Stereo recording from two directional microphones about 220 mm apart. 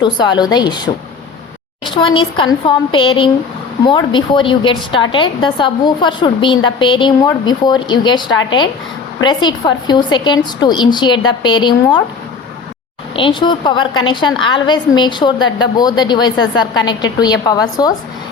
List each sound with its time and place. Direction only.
0.0 s a woman's voice: 20° left (ahead or behind)
1.8 s a woman's voice: 20° left (ahead or behind)
13.1 s a woman's voice: 20° left (ahead or behind)